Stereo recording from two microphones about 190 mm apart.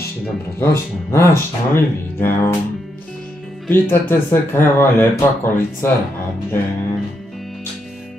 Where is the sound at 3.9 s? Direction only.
10° left (ahead or behind).